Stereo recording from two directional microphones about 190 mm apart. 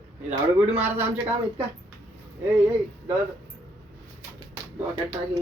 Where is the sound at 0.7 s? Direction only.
10° right (ahead or behind).